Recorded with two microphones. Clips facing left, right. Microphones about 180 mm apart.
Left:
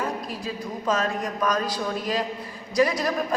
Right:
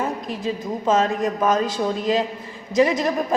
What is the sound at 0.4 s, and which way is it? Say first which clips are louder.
A woman's voice: right 6 dB; 25° right (ahead or behind).